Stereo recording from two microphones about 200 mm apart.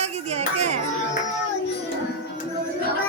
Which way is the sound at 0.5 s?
35° right (ahead or behind).